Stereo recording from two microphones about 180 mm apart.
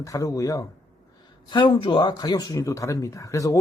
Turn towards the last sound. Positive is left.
turn(degrees=15)  # may be behind; listen again after turning